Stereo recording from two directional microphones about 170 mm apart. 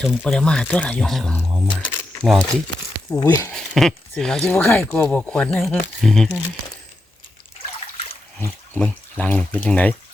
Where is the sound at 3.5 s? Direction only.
Centre (ahead or behind).